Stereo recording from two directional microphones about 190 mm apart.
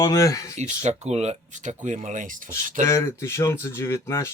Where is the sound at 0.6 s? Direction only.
35° right (ahead or behind).